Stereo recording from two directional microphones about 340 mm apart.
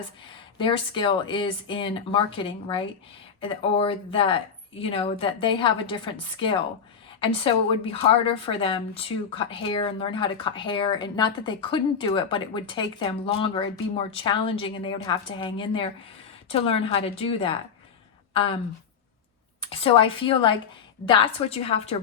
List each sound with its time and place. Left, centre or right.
0.6 s a woman's voice: centre
19.6 s a woman's voice: centre